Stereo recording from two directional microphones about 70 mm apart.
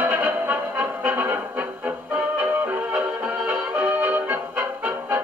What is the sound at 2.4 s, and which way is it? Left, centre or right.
Music, right.